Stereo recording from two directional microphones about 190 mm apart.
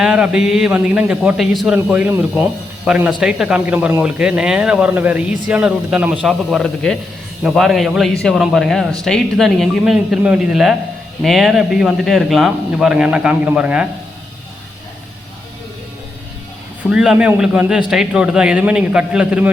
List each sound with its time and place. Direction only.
0.0 s speech: 5° right (ahead or behind)
16.9 s speech: 5° right (ahead or behind)